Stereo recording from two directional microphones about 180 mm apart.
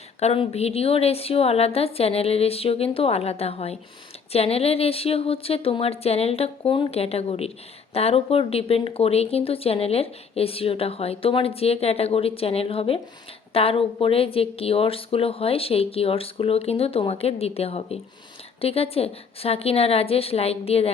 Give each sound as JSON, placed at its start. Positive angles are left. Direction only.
{"t": 0.2, "sound": "speech", "side_deg": 35}